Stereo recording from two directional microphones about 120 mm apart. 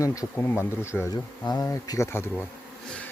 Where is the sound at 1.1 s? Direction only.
35° left (ahead or behind).